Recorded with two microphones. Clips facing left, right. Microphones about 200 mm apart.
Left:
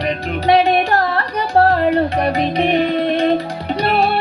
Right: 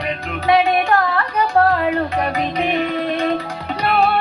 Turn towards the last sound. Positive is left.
turn(degrees=35)  # may be behind; listen again after turning